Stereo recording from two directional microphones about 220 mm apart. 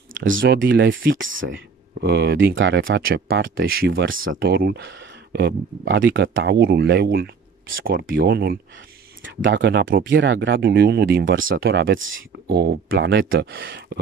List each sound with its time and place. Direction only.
0.3 s speech: 60° right (ahead or behind)
2.0 s speech: 50° right (ahead or behind)
4.4 s speech: 45° right (ahead or behind)